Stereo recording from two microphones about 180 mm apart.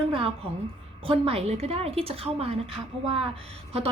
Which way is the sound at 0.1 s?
30° right (ahead or behind).